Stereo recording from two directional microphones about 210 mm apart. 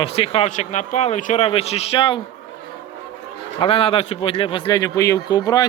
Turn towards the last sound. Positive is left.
turn(degrees=15)  # may be behind; listen again after turning